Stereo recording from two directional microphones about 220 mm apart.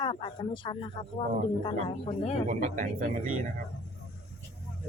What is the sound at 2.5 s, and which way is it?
Speech, 35° right (ahead or behind).